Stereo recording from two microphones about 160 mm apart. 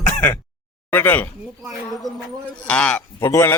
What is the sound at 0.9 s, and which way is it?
Speech, 10° left (ahead or behind).